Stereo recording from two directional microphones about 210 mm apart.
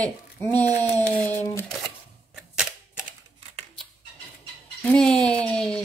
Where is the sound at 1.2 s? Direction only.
10° left (ahead or behind).